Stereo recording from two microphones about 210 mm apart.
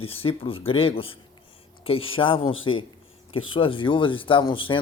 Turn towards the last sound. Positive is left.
turn(degrees=25)  # may be behind; listen again after turning